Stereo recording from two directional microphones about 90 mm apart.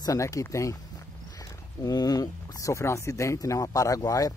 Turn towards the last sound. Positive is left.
turn(degrees=40)  # may be behind; listen again after turning